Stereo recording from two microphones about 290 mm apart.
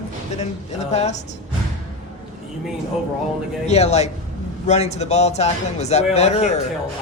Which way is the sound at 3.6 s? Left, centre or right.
Left.